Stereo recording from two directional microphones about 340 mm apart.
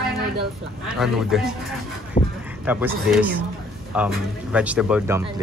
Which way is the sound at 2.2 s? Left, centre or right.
Centre.